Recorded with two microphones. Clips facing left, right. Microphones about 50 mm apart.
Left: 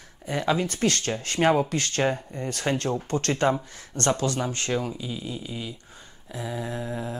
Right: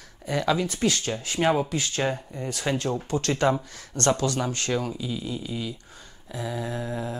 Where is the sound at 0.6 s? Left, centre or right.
Left.